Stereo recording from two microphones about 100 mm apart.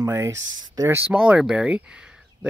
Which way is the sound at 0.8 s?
15° right (ahead or behind).